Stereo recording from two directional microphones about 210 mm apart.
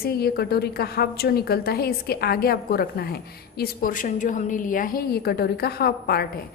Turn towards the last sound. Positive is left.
turn(degrees=50)  # may be behind; listen again after turning